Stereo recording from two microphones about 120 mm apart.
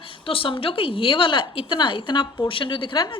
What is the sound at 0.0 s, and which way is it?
A woman's voice, 50° left (ahead or behind).